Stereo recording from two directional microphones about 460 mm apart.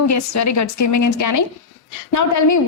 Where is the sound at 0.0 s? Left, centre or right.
Left.